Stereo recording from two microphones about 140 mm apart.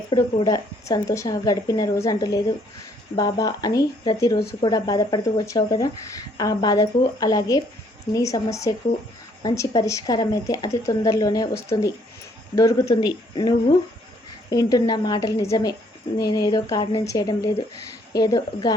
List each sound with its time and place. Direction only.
0.1 s a woman's voice: 30° left (ahead or behind)
17.0 s a woman's voice: 25° left (ahead or behind)